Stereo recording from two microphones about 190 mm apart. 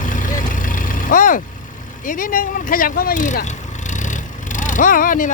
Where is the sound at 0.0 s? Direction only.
45° left (ahead or behind).